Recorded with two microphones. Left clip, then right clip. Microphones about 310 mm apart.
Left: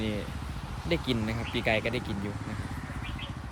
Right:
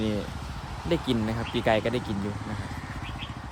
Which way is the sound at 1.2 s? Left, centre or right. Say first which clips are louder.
Right 3 dB; right.